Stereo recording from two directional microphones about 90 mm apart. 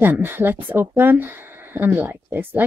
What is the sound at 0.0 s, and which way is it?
Speech, 25° right (ahead or behind).